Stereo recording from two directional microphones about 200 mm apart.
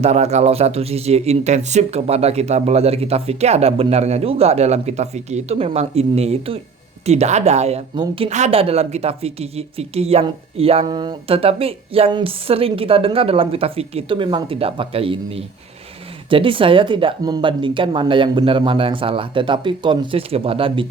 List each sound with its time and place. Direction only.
0.0 s a woman's voice: 35° right (ahead or behind)